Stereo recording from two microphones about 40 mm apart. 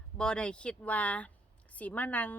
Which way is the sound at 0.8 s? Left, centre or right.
Left.